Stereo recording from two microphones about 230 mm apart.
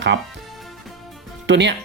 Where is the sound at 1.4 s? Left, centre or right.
Right.